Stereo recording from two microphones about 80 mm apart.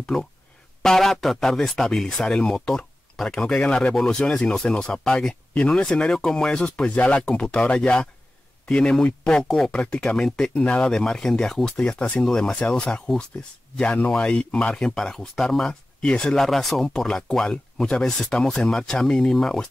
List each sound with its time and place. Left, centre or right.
0.0 s speech: centre